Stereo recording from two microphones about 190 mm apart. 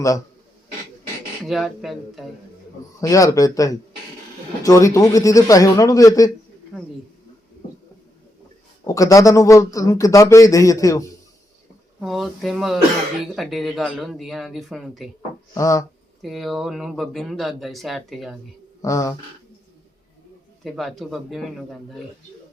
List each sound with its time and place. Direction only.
1.5 s speech: centre (ahead or behind)
3.0 s a man's voice: 15° left (ahead or behind)
8.9 s a man's voice: 15° left (ahead or behind)
11.9 s speech: centre (ahead or behind)
15.5 s a man's voice: 15° left (ahead or behind)
16.2 s speech: centre (ahead or behind)
18.8 s speech: 15° left (ahead or behind)
20.7 s speech: centre (ahead or behind)